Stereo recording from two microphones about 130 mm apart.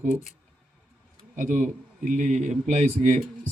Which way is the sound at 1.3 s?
85° right.